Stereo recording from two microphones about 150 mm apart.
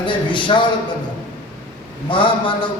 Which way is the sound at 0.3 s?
30° left (ahead or behind).